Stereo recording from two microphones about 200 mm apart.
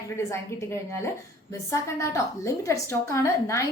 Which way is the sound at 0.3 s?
15° left (ahead or behind).